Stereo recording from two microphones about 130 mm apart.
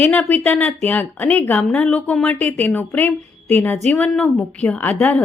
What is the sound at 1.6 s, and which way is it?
A woman's voice, 5° left (ahead or behind).